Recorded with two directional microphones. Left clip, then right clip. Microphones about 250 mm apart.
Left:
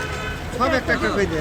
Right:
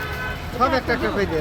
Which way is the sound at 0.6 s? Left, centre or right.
Centre.